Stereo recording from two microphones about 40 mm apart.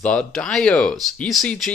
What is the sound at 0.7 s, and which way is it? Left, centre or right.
Speech, left.